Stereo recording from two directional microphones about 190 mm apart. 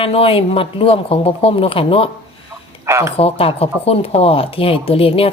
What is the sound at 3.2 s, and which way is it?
Speech, 30° left (ahead or behind).